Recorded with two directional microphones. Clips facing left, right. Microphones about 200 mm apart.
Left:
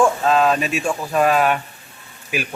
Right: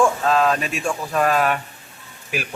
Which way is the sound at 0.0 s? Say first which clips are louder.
Left 2 dB; centre (ahead or behind).